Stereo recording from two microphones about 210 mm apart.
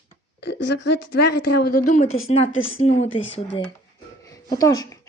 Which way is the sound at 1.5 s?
45° left (ahead or behind).